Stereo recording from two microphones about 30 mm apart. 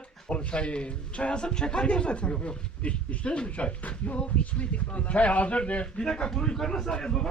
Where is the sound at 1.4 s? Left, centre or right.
Left.